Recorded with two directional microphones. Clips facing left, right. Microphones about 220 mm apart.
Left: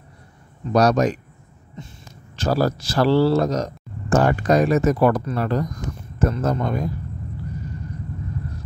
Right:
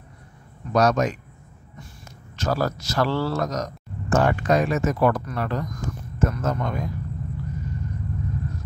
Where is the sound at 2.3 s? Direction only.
30° left (ahead or behind).